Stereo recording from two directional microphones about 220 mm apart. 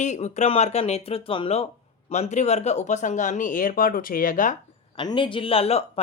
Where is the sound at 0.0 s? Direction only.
35° left (ahead or behind).